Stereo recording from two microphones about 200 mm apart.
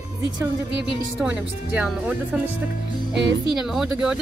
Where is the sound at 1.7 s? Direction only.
5° right (ahead or behind).